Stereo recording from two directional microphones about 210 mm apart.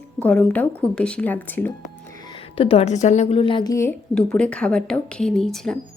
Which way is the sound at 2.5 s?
25° left (ahead or behind).